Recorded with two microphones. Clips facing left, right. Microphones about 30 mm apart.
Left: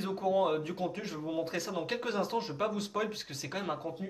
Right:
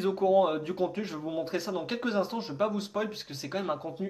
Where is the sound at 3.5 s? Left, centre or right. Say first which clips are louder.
Right 4 dB; centre.